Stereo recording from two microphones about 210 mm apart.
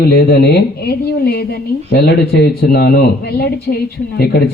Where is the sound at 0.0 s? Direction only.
50° left (ahead or behind).